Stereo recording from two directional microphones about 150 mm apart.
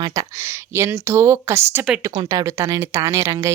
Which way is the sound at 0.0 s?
20° right (ahead or behind).